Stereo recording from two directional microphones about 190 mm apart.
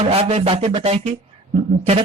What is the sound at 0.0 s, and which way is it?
Speech, 30° right (ahead or behind).